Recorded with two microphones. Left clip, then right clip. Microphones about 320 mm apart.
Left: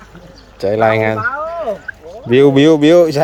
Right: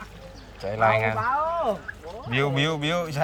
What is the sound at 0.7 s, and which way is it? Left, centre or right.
Speech, centre.